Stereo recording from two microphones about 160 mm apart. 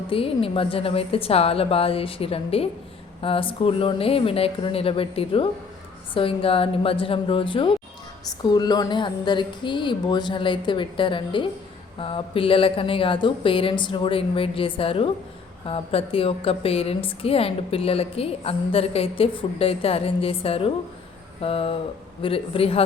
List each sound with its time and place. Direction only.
0.1 s a woman's voice: 35° left (ahead or behind)